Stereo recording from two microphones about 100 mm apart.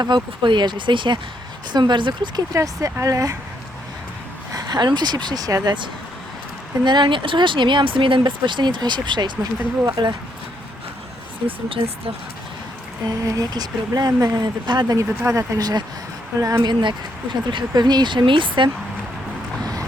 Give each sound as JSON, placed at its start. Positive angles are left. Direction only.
{"t": 0.0, "sound": "speech", "side_deg": -50}
{"t": 2.5, "sound": "speech", "side_deg": -30}
{"t": 4.5, "sound": "speech", "side_deg": -45}
{"t": 6.8, "sound": "speech", "side_deg": -50}
{"t": 11.4, "sound": "speech", "side_deg": -65}
{"t": 13.1, "sound": "speech", "side_deg": -35}
{"t": 14.9, "sound": "speech", "side_deg": -35}
{"t": 17.5, "sound": "speech", "side_deg": -45}